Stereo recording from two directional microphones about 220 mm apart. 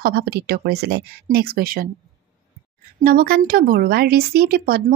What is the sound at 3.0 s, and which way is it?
Speech, 40° right (ahead or behind).